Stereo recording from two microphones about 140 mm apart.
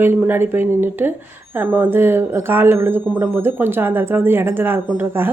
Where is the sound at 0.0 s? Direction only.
15° right (ahead or behind).